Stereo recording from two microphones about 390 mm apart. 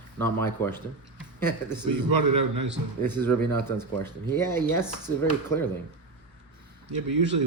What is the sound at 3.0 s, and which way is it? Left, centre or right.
Speech, centre.